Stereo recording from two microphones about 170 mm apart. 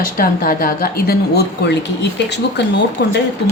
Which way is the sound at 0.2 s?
55° left (ahead or behind).